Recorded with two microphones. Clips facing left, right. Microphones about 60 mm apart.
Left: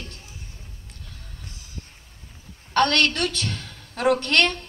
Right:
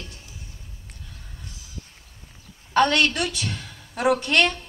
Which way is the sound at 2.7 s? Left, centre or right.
Centre.